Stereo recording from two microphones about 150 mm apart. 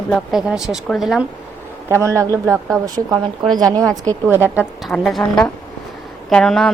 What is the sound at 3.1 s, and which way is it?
Speech, 30° right (ahead or behind).